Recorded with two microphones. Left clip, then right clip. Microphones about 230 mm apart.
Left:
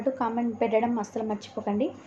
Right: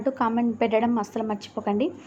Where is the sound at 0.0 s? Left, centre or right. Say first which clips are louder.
Right 3 dB; centre.